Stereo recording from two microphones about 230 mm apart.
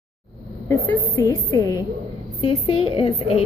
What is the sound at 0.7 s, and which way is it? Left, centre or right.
A woman's voice, centre.